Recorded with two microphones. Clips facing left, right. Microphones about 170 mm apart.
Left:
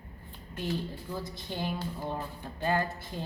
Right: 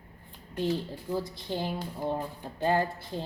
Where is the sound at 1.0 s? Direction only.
30° right (ahead or behind).